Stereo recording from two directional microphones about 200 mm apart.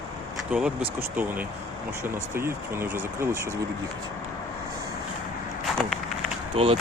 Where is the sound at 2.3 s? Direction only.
10° right (ahead or behind).